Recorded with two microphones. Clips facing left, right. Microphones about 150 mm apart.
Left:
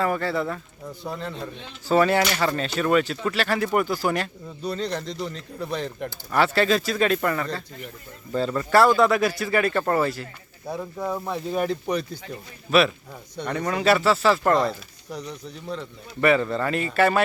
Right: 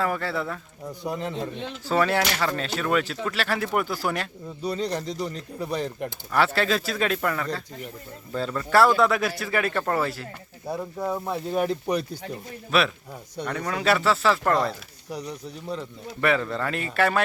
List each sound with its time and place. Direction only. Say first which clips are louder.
0.0 s speech: left 3 dB; centre (ahead or behind)
1.0 s speech: right 3 dB; 15° right (ahead or behind)
1.9 s speech: left 3 dB; centre (ahead or behind)
4.6 s speech: right 1 dB; 10° right (ahead or behind)